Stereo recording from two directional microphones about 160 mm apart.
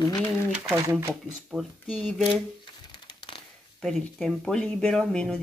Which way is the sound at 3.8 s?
Centre (ahead or behind).